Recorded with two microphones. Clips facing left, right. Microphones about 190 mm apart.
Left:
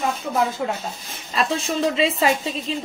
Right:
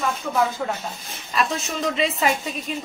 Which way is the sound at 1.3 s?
30° left (ahead or behind).